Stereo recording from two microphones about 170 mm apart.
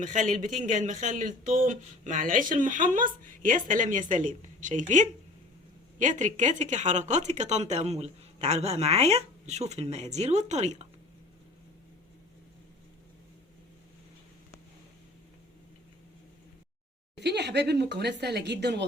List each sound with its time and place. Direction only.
0.0 s speech: 50° right (ahead or behind)
17.2 s speech: 85° right